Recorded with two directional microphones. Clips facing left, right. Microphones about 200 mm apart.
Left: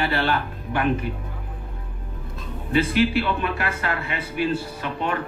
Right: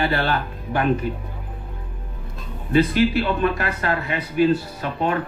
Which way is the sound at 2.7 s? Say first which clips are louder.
Right 2 dB; 40° right (ahead or behind).